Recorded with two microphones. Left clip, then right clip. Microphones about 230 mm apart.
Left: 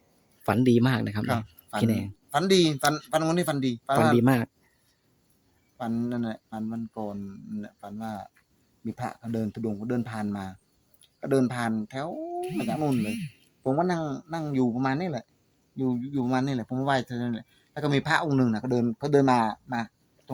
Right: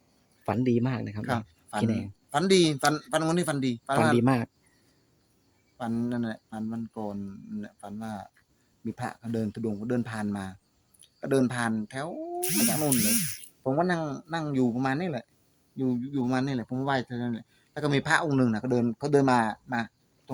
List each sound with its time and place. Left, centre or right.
0.4 s speech: centre
1.2 s speech: centre
1.8 s speech: centre
5.7 s speech: centre